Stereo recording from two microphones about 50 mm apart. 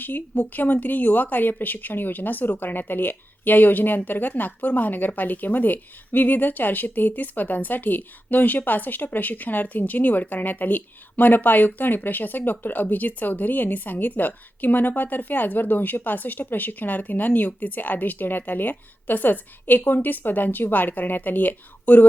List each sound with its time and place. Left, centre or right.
0.0 s speech: left